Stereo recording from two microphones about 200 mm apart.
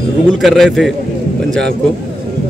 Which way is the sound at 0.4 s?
Centre (ahead or behind).